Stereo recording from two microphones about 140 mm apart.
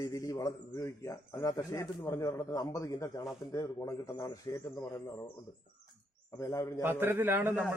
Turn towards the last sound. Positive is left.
turn(degrees=-15)  # may be behind; listen again after turning